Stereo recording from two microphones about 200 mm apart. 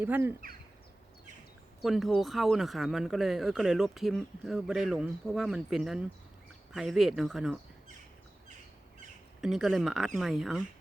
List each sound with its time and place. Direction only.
0.0 s speech: 10° right (ahead or behind)
1.8 s speech: centre (ahead or behind)
9.4 s speech: centre (ahead or behind)